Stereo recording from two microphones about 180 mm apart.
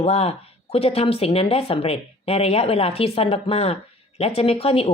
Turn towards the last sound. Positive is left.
turn(degrees=30)  # may be behind; listen again after turning